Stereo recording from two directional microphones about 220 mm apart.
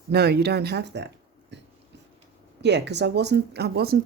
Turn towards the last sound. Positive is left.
turn(degrees=-45)  # may be behind; listen again after turning